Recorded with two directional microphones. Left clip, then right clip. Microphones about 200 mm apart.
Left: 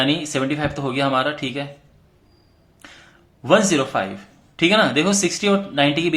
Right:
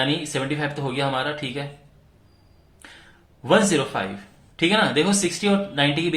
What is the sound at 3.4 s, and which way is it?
Speech, 25° left (ahead or behind).